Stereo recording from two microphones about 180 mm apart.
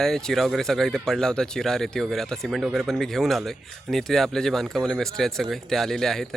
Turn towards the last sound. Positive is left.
turn(degrees=0)  # may be behind; listen again after turning